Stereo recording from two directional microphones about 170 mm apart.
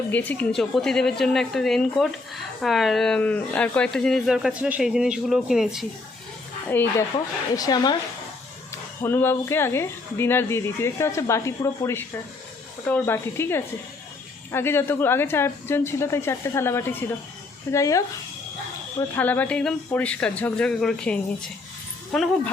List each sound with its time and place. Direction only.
0.1 s speech: 10° left (ahead or behind)
6.7 s speech: 10° left (ahead or behind)
7.5 s a woman's voice: 20° left (ahead or behind)
9.0 s a woman's voice: 15° left (ahead or behind)